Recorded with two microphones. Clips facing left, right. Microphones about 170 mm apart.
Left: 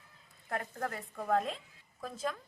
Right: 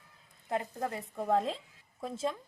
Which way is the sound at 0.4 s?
20° right (ahead or behind).